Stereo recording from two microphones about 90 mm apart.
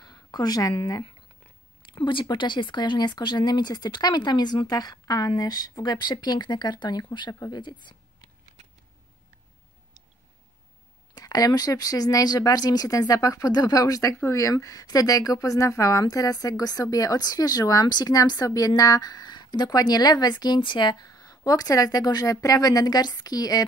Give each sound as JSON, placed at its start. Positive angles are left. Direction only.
{"t": 0.0, "sound": "a sound", "side_deg": 50}
{"t": 1.9, "sound": "speech", "side_deg": 70}
{"t": 11.1, "sound": "speech", "side_deg": 45}